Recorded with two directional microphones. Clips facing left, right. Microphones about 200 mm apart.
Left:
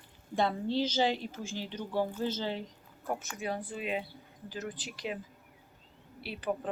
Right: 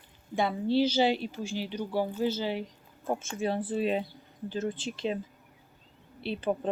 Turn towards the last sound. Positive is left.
turn(degrees=-25)  # may be behind; listen again after turning